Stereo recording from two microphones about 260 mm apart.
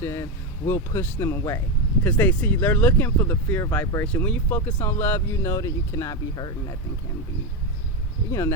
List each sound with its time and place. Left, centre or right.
0.0 s speech: centre
8.3 s speech: centre